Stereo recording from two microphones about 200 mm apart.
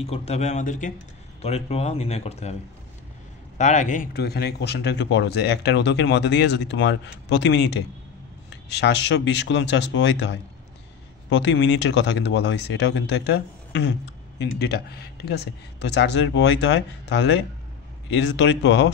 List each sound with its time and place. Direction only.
0.0 s speech: 30° left (ahead or behind)
3.5 s speech: 35° left (ahead or behind); by 18.9 s 60° left (ahead or behind)